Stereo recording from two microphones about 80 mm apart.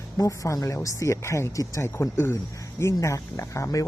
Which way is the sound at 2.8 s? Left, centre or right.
Left.